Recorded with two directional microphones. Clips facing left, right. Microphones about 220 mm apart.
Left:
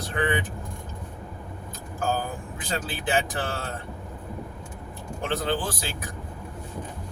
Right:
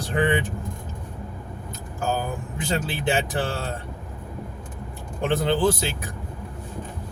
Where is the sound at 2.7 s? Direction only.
25° right (ahead or behind).